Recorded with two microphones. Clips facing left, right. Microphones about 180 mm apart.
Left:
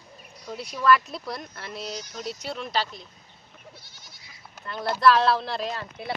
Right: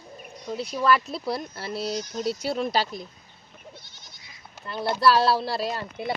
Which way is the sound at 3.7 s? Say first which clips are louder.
Right 2 dB; 5° left (ahead or behind).